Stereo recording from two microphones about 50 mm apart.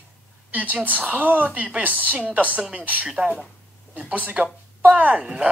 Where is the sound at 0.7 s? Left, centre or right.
Right.